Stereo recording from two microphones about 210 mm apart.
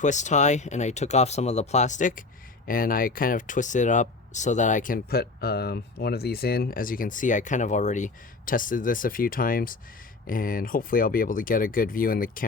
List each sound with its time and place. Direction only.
0.0 s speech: 35° left (ahead or behind)